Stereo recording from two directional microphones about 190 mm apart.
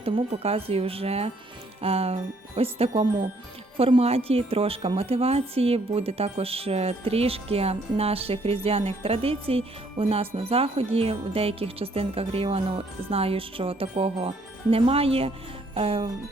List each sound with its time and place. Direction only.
0.0 s speech: 30° right (ahead or behind)
15.7 s music: 30° right (ahead or behind)